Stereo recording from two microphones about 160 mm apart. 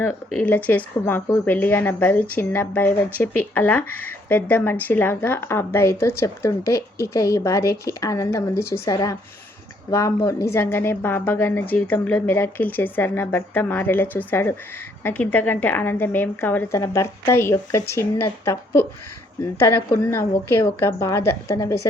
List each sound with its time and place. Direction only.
0.3 s a woman's voice: 10° left (ahead or behind)
10.2 s a woman's voice: 20° left (ahead or behind)